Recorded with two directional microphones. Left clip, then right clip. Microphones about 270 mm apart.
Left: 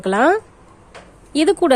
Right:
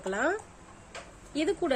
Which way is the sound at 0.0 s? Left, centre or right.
Left.